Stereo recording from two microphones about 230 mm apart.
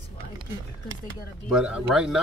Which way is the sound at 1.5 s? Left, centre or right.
Centre.